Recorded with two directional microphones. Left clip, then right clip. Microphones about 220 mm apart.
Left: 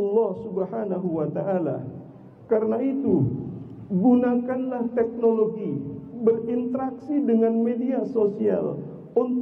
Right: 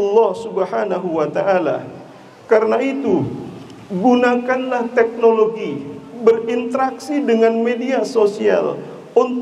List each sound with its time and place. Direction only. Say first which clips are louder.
0.2 s a man's voice: right 9 dB; 10° right (ahead or behind)